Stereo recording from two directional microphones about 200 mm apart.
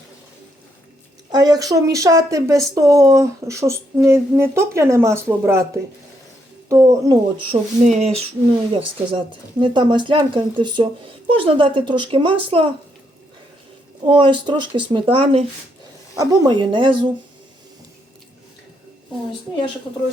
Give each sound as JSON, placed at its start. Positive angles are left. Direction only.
{"t": 1.3, "sound": "speech", "side_deg": -20}
{"t": 6.7, "sound": "speech", "side_deg": -15}
{"t": 7.5, "sound": "speech", "side_deg": -35}
{"t": 14.0, "sound": "speech", "side_deg": -25}
{"t": 16.1, "sound": "speech", "side_deg": -20}